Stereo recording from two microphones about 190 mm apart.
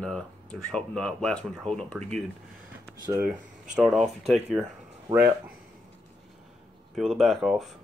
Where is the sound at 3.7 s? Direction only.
Centre (ahead or behind).